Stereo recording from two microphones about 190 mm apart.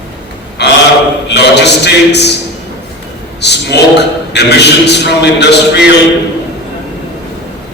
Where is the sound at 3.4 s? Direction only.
60° left (ahead or behind).